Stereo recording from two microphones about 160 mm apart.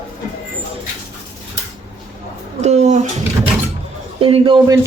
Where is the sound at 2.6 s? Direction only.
45° right (ahead or behind).